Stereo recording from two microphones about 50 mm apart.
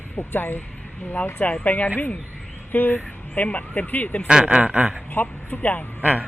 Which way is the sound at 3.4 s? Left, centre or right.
Left.